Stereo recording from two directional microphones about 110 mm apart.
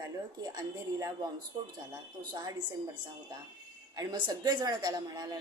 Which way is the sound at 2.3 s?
45° right (ahead or behind).